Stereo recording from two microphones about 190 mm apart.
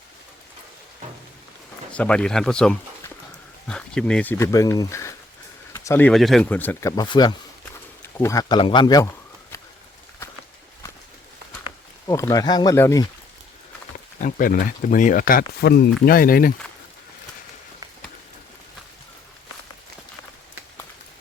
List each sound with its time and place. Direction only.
1.9 s speech: 5° left (ahead or behind)
5.7 s a sound: 15° left (ahead or behind)
6.1 s speech: centre (ahead or behind); by 9.0 s 20° left (ahead or behind)
11.6 s speech: 15° left (ahead or behind)
14.2 s speech: 45° left (ahead or behind)